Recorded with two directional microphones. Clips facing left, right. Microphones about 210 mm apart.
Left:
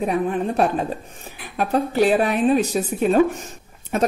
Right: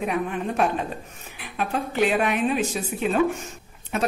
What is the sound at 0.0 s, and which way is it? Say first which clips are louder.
Speech: left 5 dB; 35° left (ahead or behind).